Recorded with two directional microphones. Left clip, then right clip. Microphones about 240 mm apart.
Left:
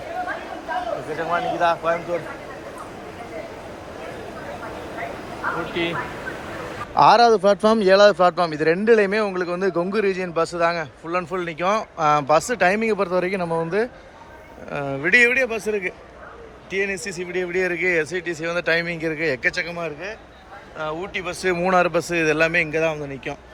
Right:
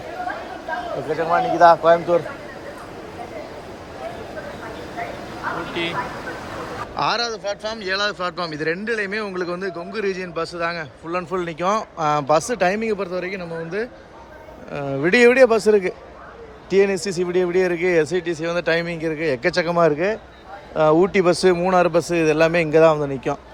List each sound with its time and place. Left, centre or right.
1.2 s speech: centre
5.8 s speech: centre
6.9 s speech: centre
17.0 s speech: right
17.2 s speech: centre
19.8 s a man's voice: right
21.0 s speech: right
21.4 s speech: centre